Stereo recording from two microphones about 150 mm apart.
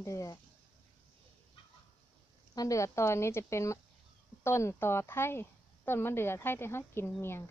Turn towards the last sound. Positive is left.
turn(degrees=15)  # may be behind; listen again after turning